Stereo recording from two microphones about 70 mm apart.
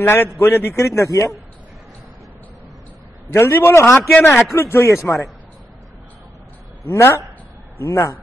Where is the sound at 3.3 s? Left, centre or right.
Left.